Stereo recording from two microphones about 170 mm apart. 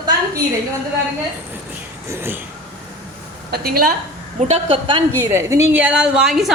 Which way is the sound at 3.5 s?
65° right (ahead or behind).